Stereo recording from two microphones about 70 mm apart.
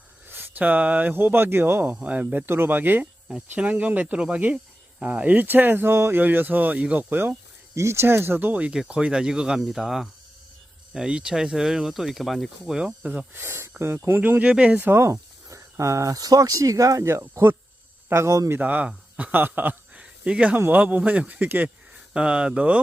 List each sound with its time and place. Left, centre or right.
0.3 s speech: right
2.5 s speech: right
7.8 s speech: right; by 12.7 s centre
12.7 s speech: centre
13.3 s speech: right
14.9 s speech: right
18.5 s speech: right
20.0 s a sound: centre
20.7 s speech: right
22.1 s speech: centre